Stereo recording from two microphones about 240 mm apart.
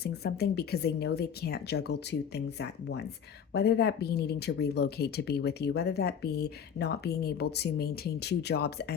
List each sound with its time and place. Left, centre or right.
0.0 s speech: left